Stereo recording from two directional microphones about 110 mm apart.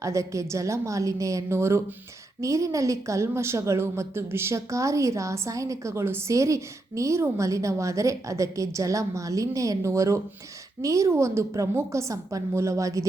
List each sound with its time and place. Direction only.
0.0 s a woman's voice: 30° right (ahead or behind)